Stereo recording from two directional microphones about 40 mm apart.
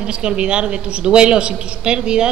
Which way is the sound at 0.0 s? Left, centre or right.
Right.